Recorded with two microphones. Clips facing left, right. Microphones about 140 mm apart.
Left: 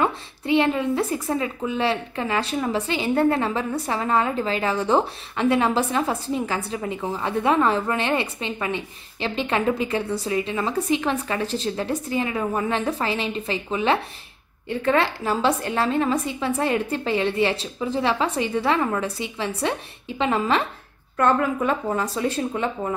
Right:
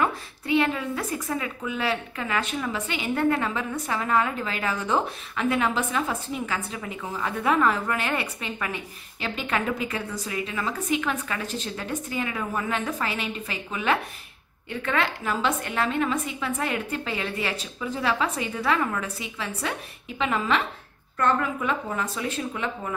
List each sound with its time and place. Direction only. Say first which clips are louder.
0.0 s a woman's voice: left 3 dB; 25° left (ahead or behind)